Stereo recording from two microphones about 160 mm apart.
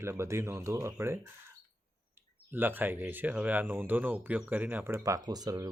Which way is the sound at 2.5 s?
10° right (ahead or behind).